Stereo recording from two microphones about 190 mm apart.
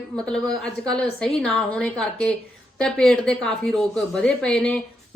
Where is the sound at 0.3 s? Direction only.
5° left (ahead or behind).